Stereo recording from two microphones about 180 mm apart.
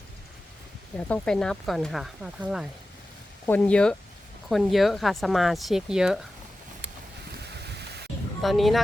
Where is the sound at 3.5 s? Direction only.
5° left (ahead or behind).